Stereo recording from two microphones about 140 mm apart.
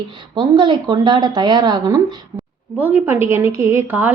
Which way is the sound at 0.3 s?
35° right (ahead or behind).